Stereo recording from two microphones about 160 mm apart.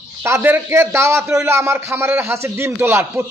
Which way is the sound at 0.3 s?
15° right (ahead or behind).